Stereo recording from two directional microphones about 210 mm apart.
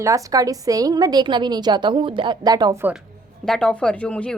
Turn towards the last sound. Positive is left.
turn(degrees=5)  # may be behind; listen again after turning